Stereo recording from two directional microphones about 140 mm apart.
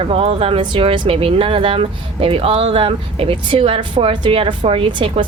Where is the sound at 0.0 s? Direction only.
40° right (ahead or behind).